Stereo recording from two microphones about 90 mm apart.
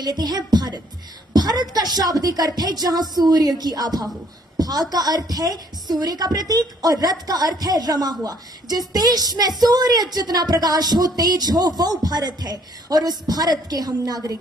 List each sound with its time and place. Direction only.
0.0 s a woman's voice: 50° right (ahead or behind)